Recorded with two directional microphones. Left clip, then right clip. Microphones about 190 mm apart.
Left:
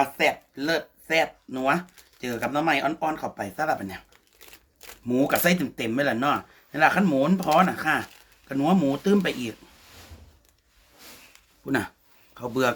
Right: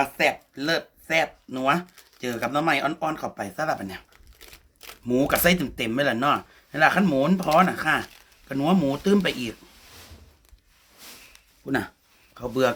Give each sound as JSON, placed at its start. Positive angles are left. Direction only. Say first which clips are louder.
{"t": 0.0, "sound": "speech", "louder": "even", "side_deg": -20}
{"t": 11.6, "sound": "speech", "louder": "even", "side_deg": 5}